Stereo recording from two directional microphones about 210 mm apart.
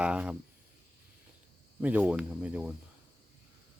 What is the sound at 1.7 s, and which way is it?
Speech, 5° right (ahead or behind).